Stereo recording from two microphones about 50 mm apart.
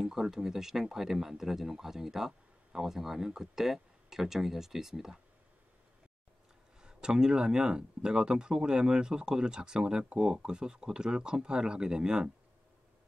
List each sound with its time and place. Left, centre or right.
0.0 s speech: centre
6.8 s speech: centre